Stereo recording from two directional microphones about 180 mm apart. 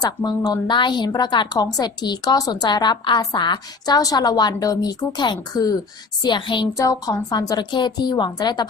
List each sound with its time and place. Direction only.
0.0 s a woman's voice: 20° left (ahead or behind)